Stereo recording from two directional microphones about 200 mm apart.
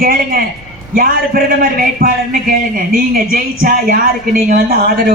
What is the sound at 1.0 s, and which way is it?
Speech, 45° right (ahead or behind).